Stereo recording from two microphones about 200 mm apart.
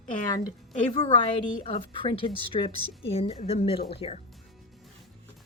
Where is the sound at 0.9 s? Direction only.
30° left (ahead or behind).